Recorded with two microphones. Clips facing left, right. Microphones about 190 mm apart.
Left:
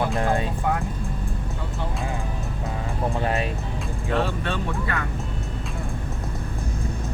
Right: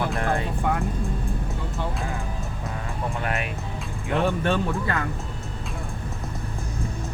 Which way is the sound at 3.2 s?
30° left (ahead or behind).